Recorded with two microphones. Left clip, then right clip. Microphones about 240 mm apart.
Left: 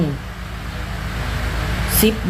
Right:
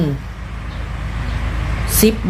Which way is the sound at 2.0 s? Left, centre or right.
Centre.